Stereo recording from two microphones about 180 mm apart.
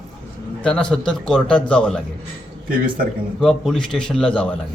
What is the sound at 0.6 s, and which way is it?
A man's voice, 5° left (ahead or behind).